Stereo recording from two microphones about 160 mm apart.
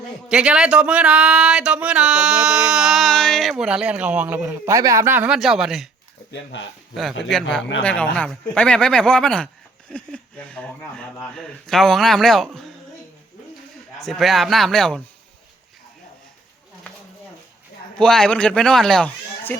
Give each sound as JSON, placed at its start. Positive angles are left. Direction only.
{"t": 0.3, "sound": "speech", "side_deg": -5}
{"t": 7.3, "sound": "speech", "side_deg": 5}
{"t": 14.0, "sound": "speech", "side_deg": 0}
{"t": 17.9, "sound": "speech", "side_deg": 5}